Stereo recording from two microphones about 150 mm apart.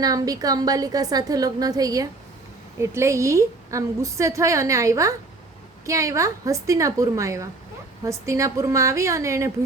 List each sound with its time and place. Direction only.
0.0 s a woman's voice: 25° right (ahead or behind)